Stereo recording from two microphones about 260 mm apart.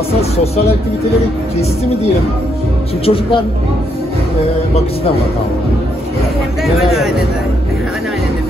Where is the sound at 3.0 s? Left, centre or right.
Left.